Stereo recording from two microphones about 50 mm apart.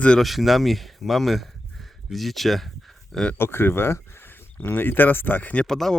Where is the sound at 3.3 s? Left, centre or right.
Left.